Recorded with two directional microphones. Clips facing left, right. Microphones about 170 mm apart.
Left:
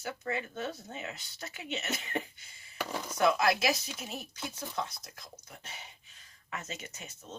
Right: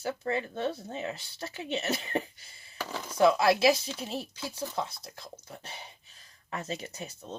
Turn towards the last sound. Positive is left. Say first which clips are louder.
# right 6 dB
turn(degrees=-35)  # may be behind; listen again after turning